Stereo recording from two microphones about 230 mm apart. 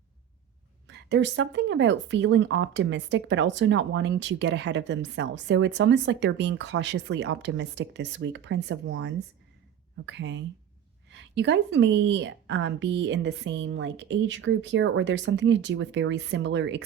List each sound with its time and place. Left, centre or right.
0.9 s speech: right